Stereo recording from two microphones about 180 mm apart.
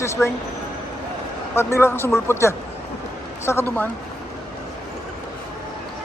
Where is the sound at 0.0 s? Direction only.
15° left (ahead or behind).